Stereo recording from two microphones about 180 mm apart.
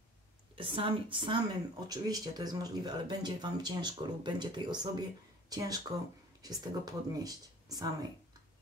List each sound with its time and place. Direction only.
0.6 s speech: 30° right (ahead or behind)